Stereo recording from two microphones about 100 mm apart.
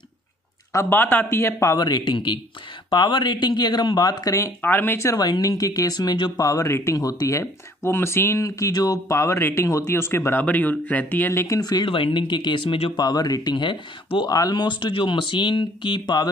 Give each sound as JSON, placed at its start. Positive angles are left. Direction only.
{"t": 0.7, "sound": "speech", "side_deg": 20}
{"t": 1.8, "sound": "speech", "side_deg": 45}
{"t": 4.6, "sound": "speech", "side_deg": 20}
{"t": 5.2, "sound": "speech", "side_deg": 40}
{"t": 11.8, "sound": "speech", "side_deg": 55}